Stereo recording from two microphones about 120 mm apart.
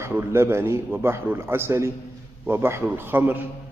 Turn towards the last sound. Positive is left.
turn(degrees=-20)  # may be behind; listen again after turning